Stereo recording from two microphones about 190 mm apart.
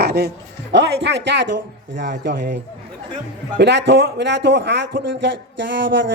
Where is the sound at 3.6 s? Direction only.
65° right (ahead or behind).